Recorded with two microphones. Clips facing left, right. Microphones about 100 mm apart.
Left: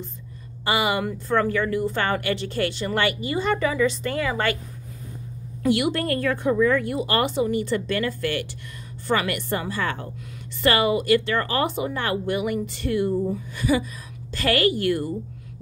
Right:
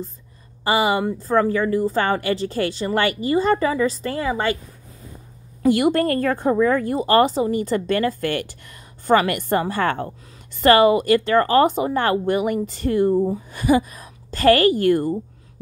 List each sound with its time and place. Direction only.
0.7 s a woman's voice: 35° right (ahead or behind)
4.3 s speech: 20° right (ahead or behind)
5.7 s a woman's voice: 45° right (ahead or behind)